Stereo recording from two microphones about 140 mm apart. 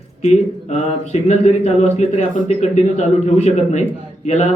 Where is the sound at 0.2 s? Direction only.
50° left (ahead or behind).